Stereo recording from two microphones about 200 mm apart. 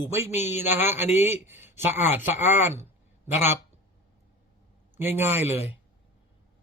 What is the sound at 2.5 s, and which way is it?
Speech, 35° left (ahead or behind).